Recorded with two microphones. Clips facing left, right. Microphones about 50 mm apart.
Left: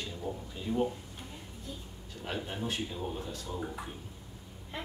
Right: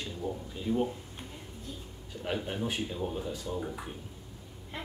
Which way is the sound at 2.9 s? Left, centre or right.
Centre.